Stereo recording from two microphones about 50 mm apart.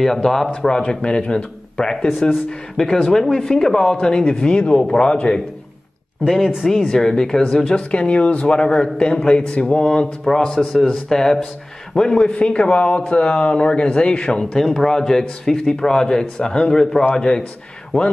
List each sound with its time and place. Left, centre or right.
0.0 s speech: centre
6.2 s speech: centre
14.4 s speech: centre